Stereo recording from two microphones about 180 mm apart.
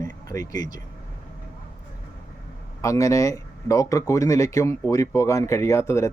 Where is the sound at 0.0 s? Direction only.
20° left (ahead or behind).